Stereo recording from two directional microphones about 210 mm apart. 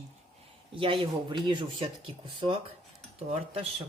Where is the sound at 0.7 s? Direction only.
25° right (ahead or behind).